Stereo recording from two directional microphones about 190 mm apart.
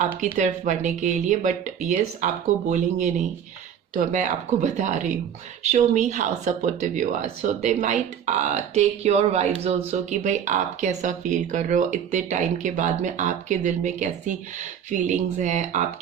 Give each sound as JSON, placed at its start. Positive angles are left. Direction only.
{"t": 0.3, "sound": "speech", "side_deg": -40}